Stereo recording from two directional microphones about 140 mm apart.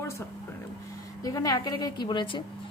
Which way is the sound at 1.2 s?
25° left (ahead or behind).